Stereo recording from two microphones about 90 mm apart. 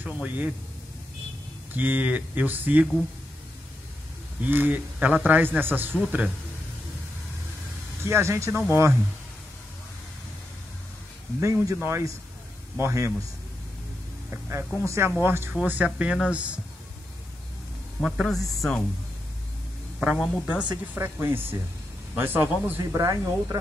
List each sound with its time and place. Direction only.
0.0 s speech: 20° right (ahead or behind)
1.7 s a man's voice: 20° right (ahead or behind)
4.4 s a man's voice: 20° right (ahead or behind)
8.0 s a man's voice: 30° right (ahead or behind)
11.4 s speech: 35° right (ahead or behind)
14.3 s music: 25° right (ahead or behind)
14.9 s a man's voice: 30° right (ahead or behind); by 16.5 s 15° right (ahead or behind)
18.0 s speech: centre (ahead or behind)
20.0 s speech: 10° right (ahead or behind)
20.7 s a man's voice: 25° right (ahead or behind)
22.9 s speech: 40° right (ahead or behind)